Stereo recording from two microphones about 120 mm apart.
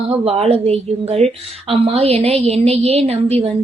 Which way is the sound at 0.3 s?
55° right (ahead or behind).